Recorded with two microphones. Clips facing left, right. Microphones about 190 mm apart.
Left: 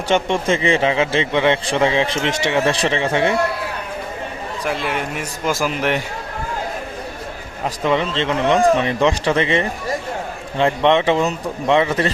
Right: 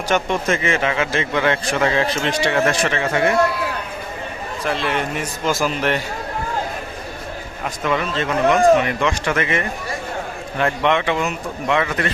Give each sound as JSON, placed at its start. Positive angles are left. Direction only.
{"t": 0.1, "sound": "a man's voice", "side_deg": 25}
{"t": 4.6, "sound": "a man's voice", "side_deg": 10}
{"t": 7.6, "sound": "a man's voice", "side_deg": 25}